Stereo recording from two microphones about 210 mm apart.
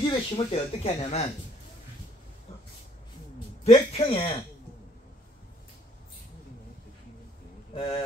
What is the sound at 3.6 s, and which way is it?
Speech, 30° left (ahead or behind).